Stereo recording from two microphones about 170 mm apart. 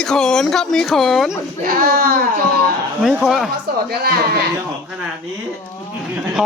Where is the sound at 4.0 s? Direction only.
65° right (ahead or behind).